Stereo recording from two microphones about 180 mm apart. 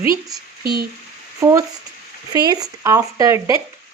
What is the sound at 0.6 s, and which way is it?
Speech, 60° right (ahead or behind).